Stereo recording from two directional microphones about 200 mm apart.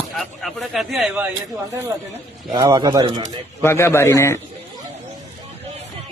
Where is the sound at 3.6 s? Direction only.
10° left (ahead or behind).